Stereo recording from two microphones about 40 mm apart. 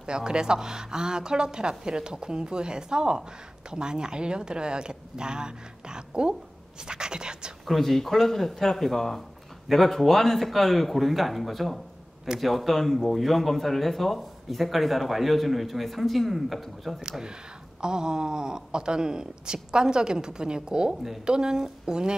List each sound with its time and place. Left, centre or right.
0.0 s speech: right
7.6 s speech: centre
17.2 s speech: centre
20.9 s a woman's voice: centre
21.3 s speech: centre